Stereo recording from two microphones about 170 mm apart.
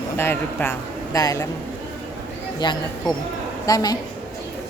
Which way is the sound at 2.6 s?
25° left (ahead or behind).